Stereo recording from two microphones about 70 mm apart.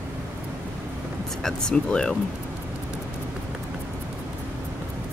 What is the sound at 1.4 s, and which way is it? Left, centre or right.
Speech, centre.